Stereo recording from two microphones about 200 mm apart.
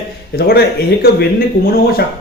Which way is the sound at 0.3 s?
55° left (ahead or behind).